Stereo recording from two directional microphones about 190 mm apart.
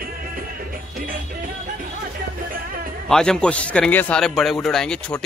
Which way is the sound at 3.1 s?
5° left (ahead or behind).